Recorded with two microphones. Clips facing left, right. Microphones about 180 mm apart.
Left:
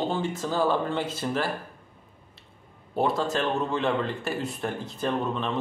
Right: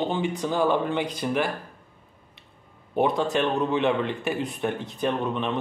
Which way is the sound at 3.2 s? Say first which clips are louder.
Right 3 dB; 20° right (ahead or behind).